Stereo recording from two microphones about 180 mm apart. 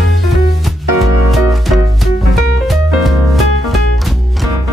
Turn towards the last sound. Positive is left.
turn(degrees=0)  # may be behind; listen again after turning